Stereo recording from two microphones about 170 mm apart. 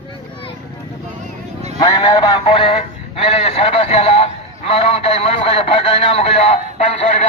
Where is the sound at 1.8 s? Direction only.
25° left (ahead or behind).